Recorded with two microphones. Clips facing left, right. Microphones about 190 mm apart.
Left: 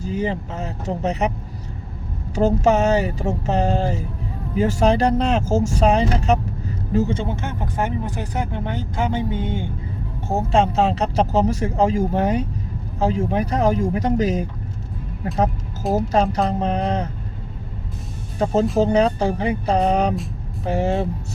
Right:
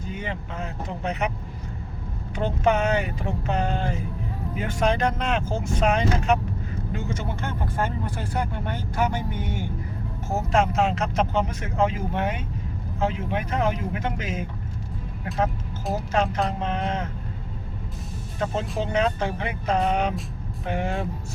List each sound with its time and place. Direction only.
0.0 s speech: 35° left (ahead or behind)
2.3 s speech: 40° left (ahead or behind)
7.3 s speech: 20° left (ahead or behind); by 14.4 s 40° left (ahead or behind)
16.1 s speech: 35° left (ahead or behind)
18.3 s speech: 35° left (ahead or behind)